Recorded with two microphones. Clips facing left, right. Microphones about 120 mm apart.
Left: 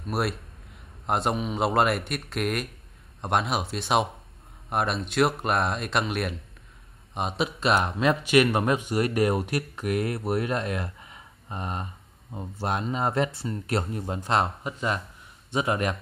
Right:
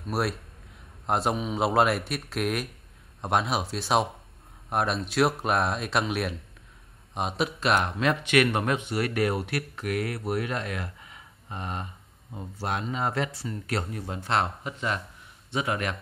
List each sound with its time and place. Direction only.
0.0 s speech: centre (ahead or behind)
7.6 s speech: 30° left (ahead or behind)
9.2 s speech: 20° left (ahead or behind)
10.6 s a sound: 30° left (ahead or behind)
11.6 s speech: 35° left (ahead or behind)